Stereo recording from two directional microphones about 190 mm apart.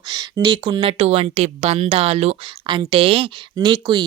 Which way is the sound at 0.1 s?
25° right (ahead or behind).